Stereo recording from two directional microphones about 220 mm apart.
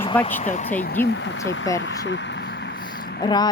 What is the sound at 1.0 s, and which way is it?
Speech, 55° left (ahead or behind).